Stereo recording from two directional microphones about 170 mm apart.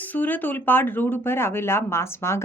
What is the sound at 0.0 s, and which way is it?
Speech, 10° left (ahead or behind).